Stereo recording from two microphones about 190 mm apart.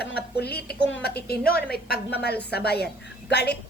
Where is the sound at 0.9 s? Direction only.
80° left.